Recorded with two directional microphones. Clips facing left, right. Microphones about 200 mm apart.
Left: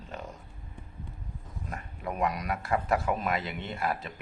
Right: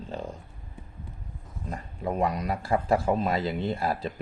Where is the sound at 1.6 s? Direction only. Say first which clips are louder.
Right 5 dB; 30° right (ahead or behind).